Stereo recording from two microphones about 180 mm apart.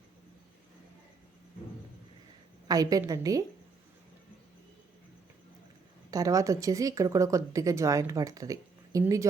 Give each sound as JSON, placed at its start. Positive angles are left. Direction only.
{"t": 2.6, "sound": "a woman's voice", "side_deg": -20}
{"t": 6.1, "sound": "speech", "side_deg": -20}